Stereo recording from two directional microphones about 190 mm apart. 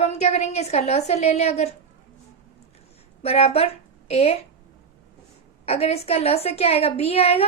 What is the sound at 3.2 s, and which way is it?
A woman's voice, 30° left (ahead or behind).